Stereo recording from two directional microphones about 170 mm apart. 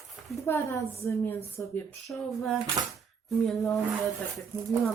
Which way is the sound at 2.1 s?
Centre (ahead or behind).